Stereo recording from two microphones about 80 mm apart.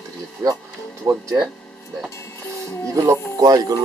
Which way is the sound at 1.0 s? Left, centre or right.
Right.